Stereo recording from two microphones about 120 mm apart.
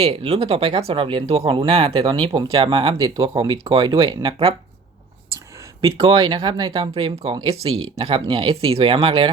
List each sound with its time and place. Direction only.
0.0 s speech: 55° right (ahead or behind)
5.8 s speech: 45° right (ahead or behind)